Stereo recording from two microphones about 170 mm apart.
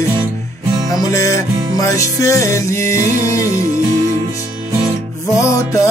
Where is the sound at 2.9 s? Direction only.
50° right (ahead or behind).